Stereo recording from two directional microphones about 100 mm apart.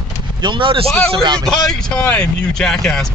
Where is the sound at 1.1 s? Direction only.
50° right (ahead or behind).